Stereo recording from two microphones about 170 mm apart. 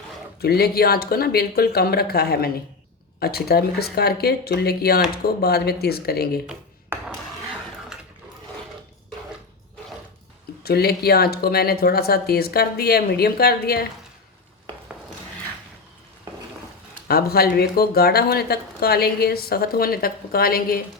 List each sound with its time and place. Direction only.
0.4 s speech: 65° left (ahead or behind)
10.6 s speech: 65° left (ahead or behind)
17.1 s speech: 65° left (ahead or behind)